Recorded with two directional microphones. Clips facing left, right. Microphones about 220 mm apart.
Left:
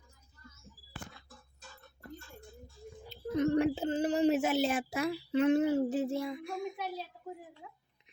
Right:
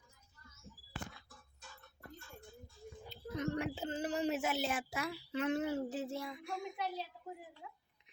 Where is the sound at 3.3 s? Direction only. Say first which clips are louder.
Left 10 dB; 30° left (ahead or behind).